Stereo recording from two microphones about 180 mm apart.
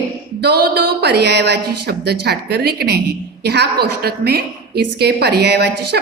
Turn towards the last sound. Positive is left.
turn(degrees=-65)  # may be behind; listen again after turning